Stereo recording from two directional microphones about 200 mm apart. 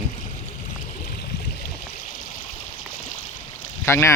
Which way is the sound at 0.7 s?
50° left (ahead or behind).